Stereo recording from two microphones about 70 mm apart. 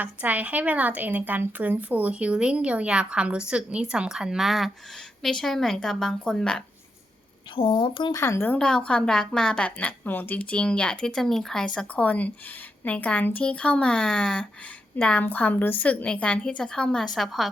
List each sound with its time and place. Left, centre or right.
0.0 s a woman's voice: right; by 6.6 s centre
8.1 s speech: left
8.5 s a woman's voice: centre
17.2 s a woman's voice: centre